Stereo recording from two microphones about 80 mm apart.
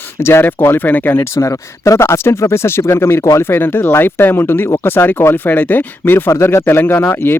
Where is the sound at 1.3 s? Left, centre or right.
Left.